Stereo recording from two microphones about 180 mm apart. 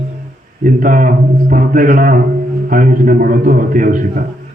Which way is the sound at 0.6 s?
50° right (ahead or behind).